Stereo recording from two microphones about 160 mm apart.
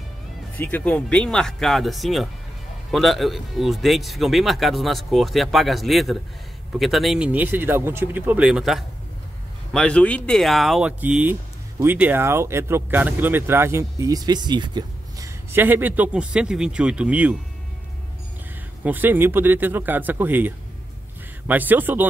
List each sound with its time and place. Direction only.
0.6 s speech: 10° left (ahead or behind); by 17.4 s 10° right (ahead or behind)
18.9 s speech: 10° right (ahead or behind)